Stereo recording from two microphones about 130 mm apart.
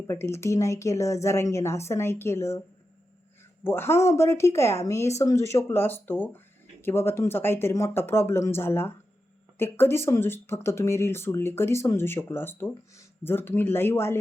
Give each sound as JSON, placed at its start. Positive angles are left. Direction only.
{"t": 0.1, "sound": "speech", "side_deg": 20}